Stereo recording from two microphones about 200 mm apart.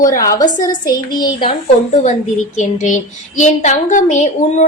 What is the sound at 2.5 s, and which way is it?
Speech, 40° left (ahead or behind).